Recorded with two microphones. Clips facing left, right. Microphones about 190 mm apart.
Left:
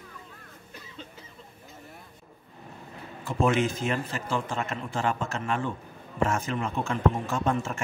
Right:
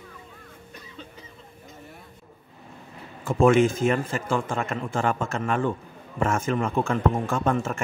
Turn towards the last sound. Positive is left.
turn(degrees=-55)  # may be behind; listen again after turning